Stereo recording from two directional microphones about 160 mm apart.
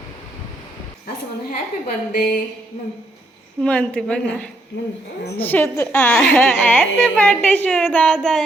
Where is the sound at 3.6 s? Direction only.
5° left (ahead or behind).